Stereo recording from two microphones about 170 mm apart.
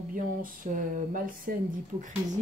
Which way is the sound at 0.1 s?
55° right (ahead or behind).